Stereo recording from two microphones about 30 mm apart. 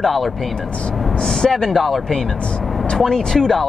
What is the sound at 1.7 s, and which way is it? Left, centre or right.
Speech, centre.